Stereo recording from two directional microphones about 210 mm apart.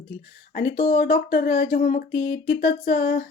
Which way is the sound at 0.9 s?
45° left (ahead or behind).